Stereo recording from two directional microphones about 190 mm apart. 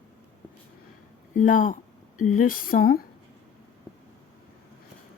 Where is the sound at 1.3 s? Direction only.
45° left (ahead or behind).